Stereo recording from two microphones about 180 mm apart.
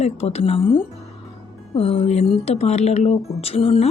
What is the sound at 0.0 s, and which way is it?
A woman's voice, 35° left (ahead or behind).